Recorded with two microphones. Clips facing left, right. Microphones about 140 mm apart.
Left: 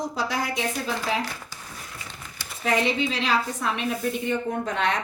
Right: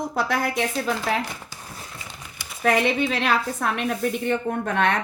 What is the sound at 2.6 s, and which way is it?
A woman's voice, 55° right (ahead or behind).